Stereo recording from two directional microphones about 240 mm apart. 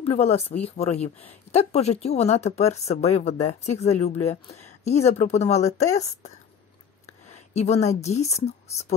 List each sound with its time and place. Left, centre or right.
0.0 s speech: left
7.5 s speech: left